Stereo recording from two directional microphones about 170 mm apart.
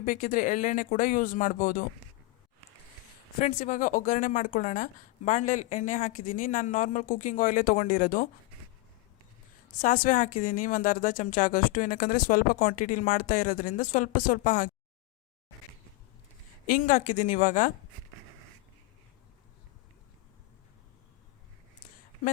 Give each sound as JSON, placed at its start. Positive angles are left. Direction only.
{"t": 0.0, "sound": "a woman's voice", "side_deg": 55}
{"t": 3.4, "sound": "a woman's voice", "side_deg": 50}
{"t": 9.8, "sound": "a woman's voice", "side_deg": 50}
{"t": 16.6, "sound": "a woman's voice", "side_deg": 55}